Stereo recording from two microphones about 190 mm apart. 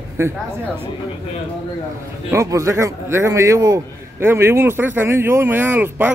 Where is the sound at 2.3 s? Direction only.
15° right (ahead or behind).